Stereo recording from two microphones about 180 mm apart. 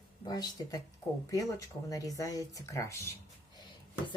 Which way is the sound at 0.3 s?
20° left (ahead or behind).